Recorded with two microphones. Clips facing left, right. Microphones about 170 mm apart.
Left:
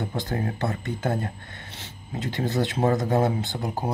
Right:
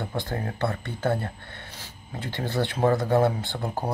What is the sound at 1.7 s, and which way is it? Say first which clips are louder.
Speech: left 6 dB; 25° left (ahead or behind).